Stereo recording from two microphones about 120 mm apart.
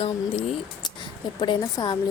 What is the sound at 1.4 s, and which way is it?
Speech, 35° left (ahead or behind).